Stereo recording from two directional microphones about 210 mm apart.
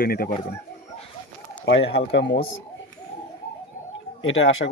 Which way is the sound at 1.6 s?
55° left (ahead or behind).